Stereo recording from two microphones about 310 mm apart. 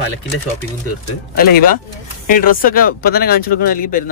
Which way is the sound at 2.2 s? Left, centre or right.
Left.